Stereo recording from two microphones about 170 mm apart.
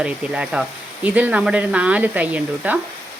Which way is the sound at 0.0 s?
10° right (ahead or behind).